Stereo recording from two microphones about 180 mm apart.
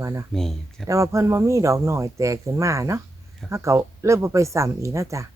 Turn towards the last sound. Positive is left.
turn(degrees=-15)  # may be behind; listen again after turning